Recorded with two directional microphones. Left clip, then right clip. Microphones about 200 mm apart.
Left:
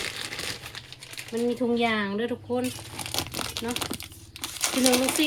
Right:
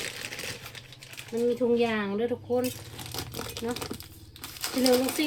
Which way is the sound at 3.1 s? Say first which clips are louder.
Left 6 dB; 30° left (ahead or behind).